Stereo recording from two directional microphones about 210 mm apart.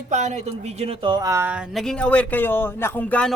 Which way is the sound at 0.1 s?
35° right (ahead or behind).